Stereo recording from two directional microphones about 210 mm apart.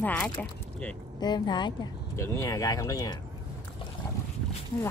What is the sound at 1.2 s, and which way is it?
Speech, 20° left (ahead or behind).